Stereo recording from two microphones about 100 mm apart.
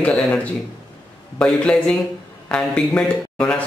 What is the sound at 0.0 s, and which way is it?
Speech, 5° left (ahead or behind).